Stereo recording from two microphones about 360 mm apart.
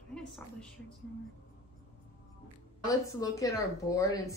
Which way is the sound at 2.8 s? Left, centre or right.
Centre.